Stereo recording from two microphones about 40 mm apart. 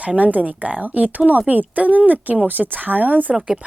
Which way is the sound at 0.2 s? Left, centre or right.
Right.